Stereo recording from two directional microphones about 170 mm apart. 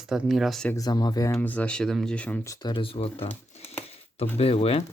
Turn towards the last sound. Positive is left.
turn(degrees=35)  # may be behind; listen again after turning